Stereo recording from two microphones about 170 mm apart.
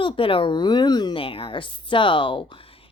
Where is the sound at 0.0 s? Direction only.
30° left (ahead or behind).